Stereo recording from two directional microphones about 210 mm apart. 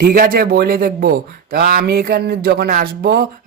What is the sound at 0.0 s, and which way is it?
Speech, 45° right (ahead or behind).